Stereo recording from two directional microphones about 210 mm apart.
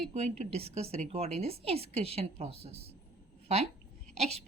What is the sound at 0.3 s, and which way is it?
A woman's voice, 30° right (ahead or behind).